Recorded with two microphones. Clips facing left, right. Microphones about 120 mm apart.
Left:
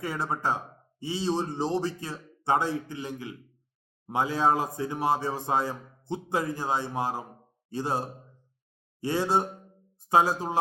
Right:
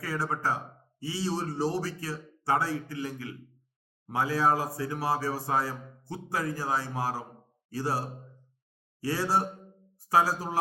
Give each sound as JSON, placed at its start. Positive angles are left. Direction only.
{"t": 0.0, "sound": "speech", "side_deg": 20}